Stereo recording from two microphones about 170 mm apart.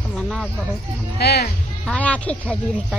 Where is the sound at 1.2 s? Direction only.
70° left (ahead or behind).